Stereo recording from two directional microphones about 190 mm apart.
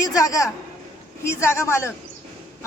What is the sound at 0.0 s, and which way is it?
Speech, 20° left (ahead or behind).